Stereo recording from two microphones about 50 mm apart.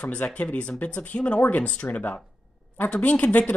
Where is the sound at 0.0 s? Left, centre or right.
Left.